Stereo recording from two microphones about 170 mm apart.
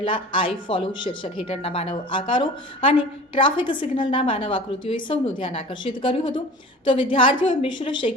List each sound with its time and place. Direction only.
0.0 s speech: 30° left (ahead or behind)